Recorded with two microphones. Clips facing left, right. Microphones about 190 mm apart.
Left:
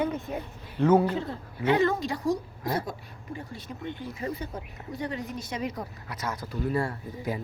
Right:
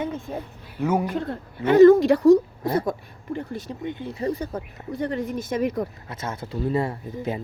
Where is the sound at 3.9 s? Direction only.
20° right (ahead or behind).